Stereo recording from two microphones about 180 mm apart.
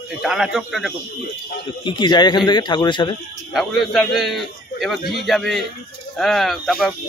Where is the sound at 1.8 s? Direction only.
25° left (ahead or behind).